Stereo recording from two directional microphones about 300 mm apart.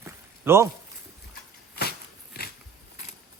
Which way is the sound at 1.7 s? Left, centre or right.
Left.